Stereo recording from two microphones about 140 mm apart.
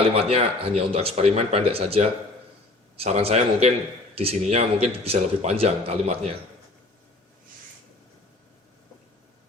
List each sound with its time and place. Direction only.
0.2 s speech: 45° right (ahead or behind)